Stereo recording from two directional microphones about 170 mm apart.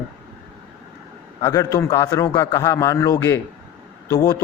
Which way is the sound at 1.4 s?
20° left (ahead or behind).